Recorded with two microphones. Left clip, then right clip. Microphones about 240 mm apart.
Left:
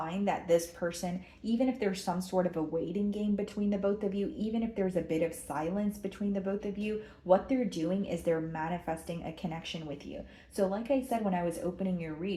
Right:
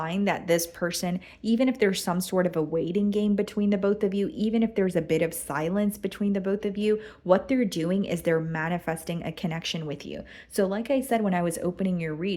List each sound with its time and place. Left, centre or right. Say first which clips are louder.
0.1 s speech: right 3 dB; right